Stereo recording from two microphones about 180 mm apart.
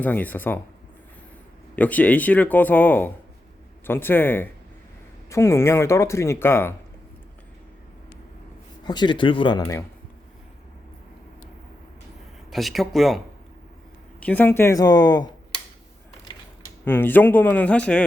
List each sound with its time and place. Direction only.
0.0 s speech: 10° left (ahead or behind)
1.7 s speech: 10° left (ahead or behind)
8.8 s speech: 25° left (ahead or behind)
12.5 s speech: centre (ahead or behind); by 15.6 s 20° left (ahead or behind)
16.8 s speech: 10° left (ahead or behind)